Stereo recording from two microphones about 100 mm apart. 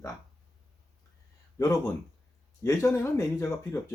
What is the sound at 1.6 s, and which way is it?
Speech, 30° left (ahead or behind).